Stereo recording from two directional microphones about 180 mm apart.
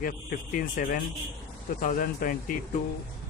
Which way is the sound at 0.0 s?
50° left (ahead or behind).